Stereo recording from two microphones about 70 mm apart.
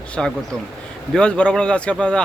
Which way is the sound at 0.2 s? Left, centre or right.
Centre.